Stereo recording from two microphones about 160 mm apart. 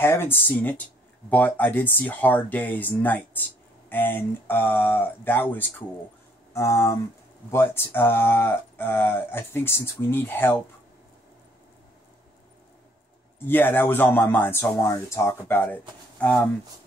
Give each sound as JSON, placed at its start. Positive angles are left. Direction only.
{"t": 0.0, "sound": "speech", "side_deg": 15}
{"t": 13.5, "sound": "speech", "side_deg": 15}